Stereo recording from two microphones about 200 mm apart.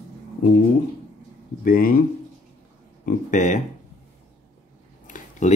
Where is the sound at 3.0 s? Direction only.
40° left (ahead or behind).